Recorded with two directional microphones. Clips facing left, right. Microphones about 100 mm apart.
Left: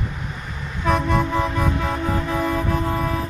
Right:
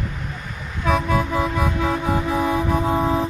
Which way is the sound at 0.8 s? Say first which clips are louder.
Even; centre (ahead or behind).